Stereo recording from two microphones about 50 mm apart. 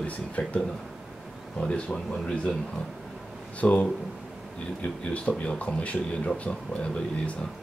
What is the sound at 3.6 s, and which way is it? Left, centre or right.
Speech, left.